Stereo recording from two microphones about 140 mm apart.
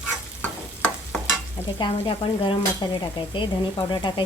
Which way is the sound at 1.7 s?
35° left (ahead or behind).